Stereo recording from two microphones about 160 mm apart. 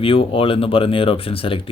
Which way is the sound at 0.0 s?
35° left (ahead or behind).